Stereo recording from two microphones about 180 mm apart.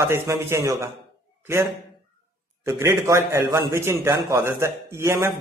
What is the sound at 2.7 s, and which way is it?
A man's voice, 15° right (ahead or behind).